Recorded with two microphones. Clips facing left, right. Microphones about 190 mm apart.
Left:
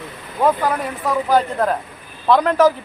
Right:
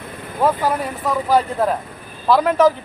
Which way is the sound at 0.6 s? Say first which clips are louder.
Even; centre (ahead or behind).